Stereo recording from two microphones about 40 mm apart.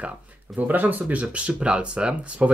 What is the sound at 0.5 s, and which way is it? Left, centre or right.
Speech, right.